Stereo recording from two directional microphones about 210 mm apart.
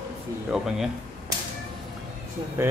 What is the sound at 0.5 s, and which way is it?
Speech, centre (ahead or behind).